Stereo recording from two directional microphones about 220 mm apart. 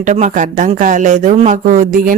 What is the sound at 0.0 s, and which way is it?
Speech, 35° right (ahead or behind).